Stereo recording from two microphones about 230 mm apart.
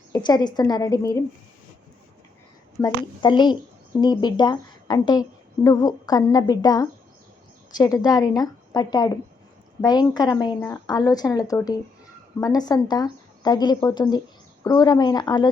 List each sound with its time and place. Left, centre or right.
0.1 s speech: centre
2.7 s a woman's voice: centre